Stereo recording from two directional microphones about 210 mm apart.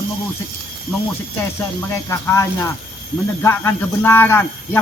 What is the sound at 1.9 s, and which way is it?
A man's voice, 10° left (ahead or behind).